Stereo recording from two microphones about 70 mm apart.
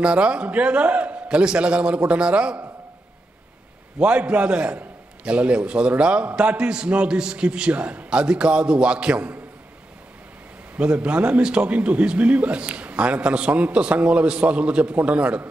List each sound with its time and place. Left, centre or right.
0.0 s a man's voice: centre
4.0 s a man's voice: centre
10.8 s a man's voice: centre